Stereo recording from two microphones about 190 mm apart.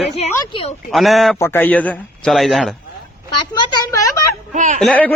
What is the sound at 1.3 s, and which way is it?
Speech, 10° left (ahead or behind).